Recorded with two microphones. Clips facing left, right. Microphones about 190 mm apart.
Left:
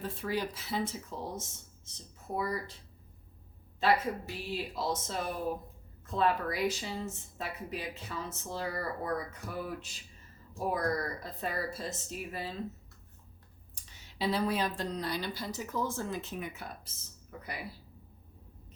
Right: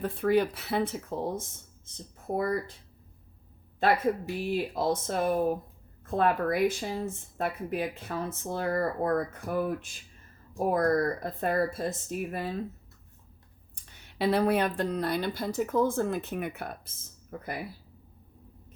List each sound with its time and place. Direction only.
0.0 s a woman's voice: 60° right (ahead or behind)
3.8 s a woman's voice: 55° right (ahead or behind)
13.9 s a woman's voice: 60° right (ahead or behind)